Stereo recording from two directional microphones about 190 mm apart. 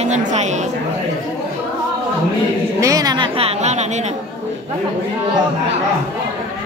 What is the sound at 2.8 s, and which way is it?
A woman's voice, 20° right (ahead or behind).